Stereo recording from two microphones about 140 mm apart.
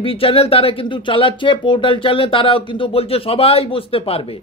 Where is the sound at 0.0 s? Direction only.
40° left (ahead or behind).